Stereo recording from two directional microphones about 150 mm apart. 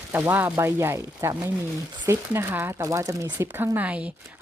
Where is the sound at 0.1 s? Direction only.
15° right (ahead or behind).